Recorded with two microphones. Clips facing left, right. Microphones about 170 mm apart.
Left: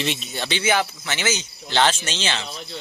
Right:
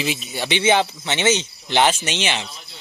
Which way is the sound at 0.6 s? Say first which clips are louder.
Right 4 dB; 20° right (ahead or behind).